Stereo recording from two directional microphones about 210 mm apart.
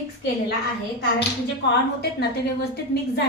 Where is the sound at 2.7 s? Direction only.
50° left (ahead or behind).